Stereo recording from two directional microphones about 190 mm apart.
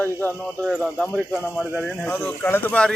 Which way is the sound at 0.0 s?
10° left (ahead or behind).